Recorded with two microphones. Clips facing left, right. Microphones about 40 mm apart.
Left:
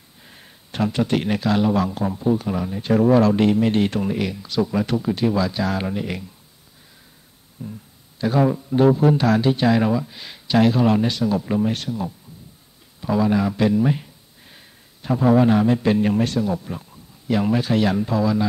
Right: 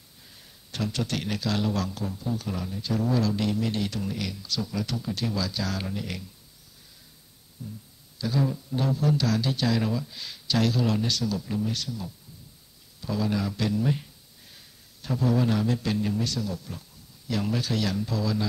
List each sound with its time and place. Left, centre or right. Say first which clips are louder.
0.2 s speech: left 6 dB; left
2.0 s speech: left 11 dB; left
2.3 s speech: left 9 dB; left
2.7 s speech: left 11 dB; left
7.6 s speech: left 6 dB; left
13.0 s speech: left 9 dB; left
16.0 s a man's voice: left 8 dB; left
16.3 s speech: left 10 dB; left